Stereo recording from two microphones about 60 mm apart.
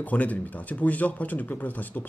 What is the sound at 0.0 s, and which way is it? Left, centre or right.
Speech, left.